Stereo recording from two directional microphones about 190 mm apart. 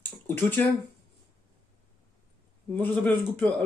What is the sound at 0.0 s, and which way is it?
Speech, 10° left (ahead or behind).